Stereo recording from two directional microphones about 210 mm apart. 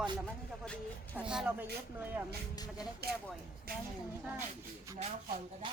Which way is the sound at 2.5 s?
20° left (ahead or behind).